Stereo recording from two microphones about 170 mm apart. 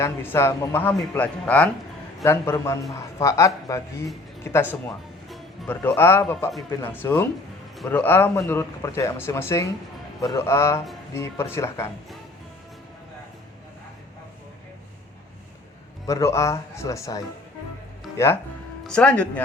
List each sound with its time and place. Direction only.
0.0 s speech: 15° left (ahead or behind)
16.0 s speech: 15° left (ahead or behind)
18.9 s speech: 5° left (ahead or behind)